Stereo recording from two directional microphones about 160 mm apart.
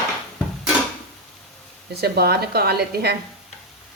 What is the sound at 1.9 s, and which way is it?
A woman's voice, 80° right.